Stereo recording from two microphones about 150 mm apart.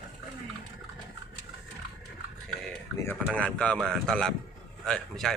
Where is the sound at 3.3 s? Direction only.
10° left (ahead or behind).